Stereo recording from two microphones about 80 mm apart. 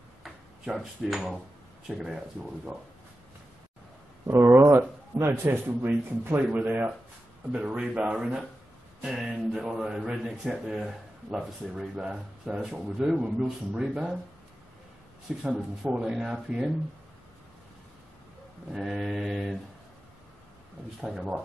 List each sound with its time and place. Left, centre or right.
0.2 s speech: centre
4.3 s a man's voice: right
7.5 s speech: centre
15.3 s speech: centre
18.7 s speech: centre
21.0 s speech: centre